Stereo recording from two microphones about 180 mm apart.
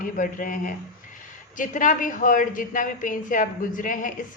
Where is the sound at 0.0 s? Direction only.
50° left (ahead or behind).